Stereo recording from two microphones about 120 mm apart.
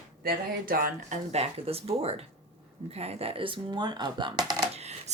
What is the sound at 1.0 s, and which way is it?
Speech, 60° right (ahead or behind).